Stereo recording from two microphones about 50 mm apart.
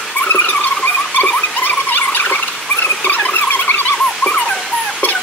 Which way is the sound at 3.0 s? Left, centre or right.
Left.